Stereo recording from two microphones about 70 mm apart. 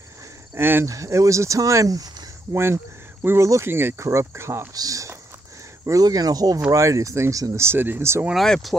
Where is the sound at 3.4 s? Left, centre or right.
Right.